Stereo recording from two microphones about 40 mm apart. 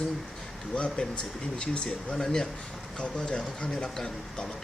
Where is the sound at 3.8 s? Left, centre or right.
Centre.